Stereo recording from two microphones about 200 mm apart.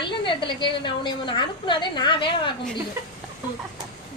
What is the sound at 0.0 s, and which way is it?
A woman's voice, 25° left (ahead or behind).